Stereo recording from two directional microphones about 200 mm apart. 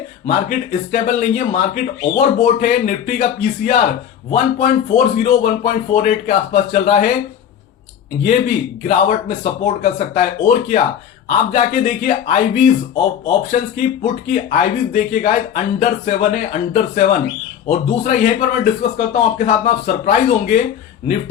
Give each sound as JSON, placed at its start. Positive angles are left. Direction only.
{"t": 0.3, "sound": "speech", "side_deg": 40}
{"t": 8.2, "sound": "speech", "side_deg": 40}